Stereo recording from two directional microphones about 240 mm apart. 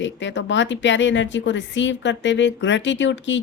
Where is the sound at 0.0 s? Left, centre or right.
Left.